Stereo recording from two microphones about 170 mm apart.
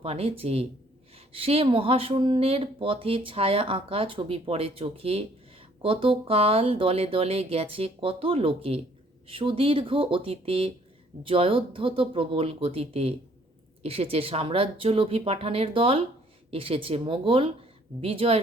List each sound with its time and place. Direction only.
0.0 s speech: 35° right (ahead or behind)